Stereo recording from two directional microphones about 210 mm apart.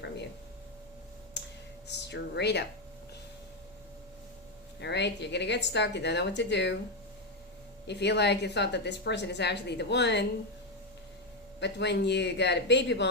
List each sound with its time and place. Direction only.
1.4 s clicking: 55° left (ahead or behind)
1.9 s speech: 55° left (ahead or behind)
4.8 s a woman's voice: 55° left (ahead or behind)
7.9 s a woman's voice: 55° left (ahead or behind)
11.6 s a woman's voice: 55° left (ahead or behind)